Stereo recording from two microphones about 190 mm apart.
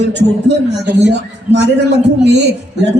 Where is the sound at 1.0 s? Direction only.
65° right (ahead or behind).